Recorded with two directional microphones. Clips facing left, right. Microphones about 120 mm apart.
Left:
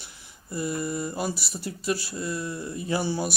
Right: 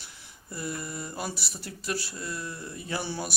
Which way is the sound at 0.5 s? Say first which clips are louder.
Left 7 dB; 20° left (ahead or behind).